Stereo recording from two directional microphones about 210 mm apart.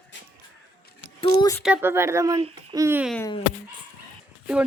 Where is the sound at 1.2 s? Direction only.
20° left (ahead or behind).